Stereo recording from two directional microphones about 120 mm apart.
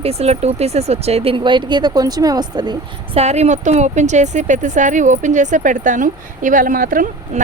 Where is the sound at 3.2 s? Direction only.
65° right (ahead or behind).